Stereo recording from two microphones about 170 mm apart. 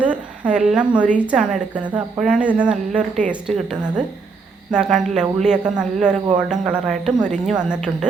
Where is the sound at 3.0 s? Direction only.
45° right (ahead or behind).